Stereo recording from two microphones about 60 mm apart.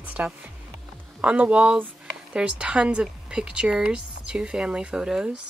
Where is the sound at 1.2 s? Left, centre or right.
Right.